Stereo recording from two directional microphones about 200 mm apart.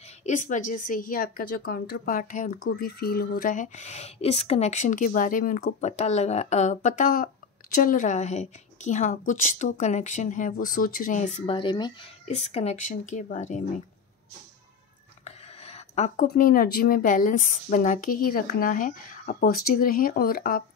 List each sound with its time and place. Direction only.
0.2 s speech: 40° left (ahead or behind)
2.8 s a woman's voice: 50° left (ahead or behind)
15.2 s a sound: 30° left (ahead or behind)
16.3 s speech: 45° left (ahead or behind)